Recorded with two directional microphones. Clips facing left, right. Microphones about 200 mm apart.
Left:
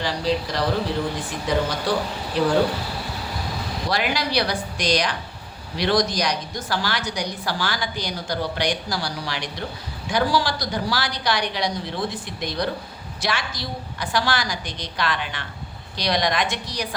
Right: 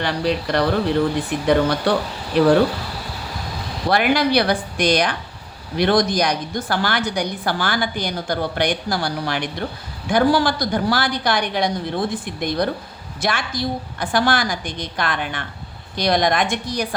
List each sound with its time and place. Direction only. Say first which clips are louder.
0.0 s a woman's voice: right 2 dB; 60° right (ahead or behind)
3.8 s a woman's voice: right 8 dB; 55° right (ahead or behind)